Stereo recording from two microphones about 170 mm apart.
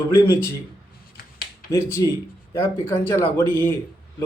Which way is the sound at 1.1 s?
60° left (ahead or behind).